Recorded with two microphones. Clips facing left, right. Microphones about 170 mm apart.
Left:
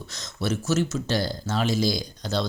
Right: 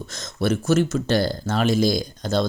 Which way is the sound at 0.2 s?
55° right (ahead or behind).